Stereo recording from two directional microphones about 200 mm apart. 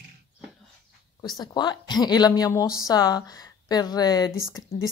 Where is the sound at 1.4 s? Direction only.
20° left (ahead or behind).